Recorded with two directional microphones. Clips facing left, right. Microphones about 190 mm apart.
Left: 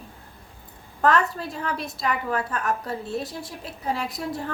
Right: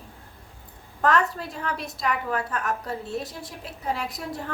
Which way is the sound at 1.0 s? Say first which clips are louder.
Left 1 dB; 35° left (ahead or behind).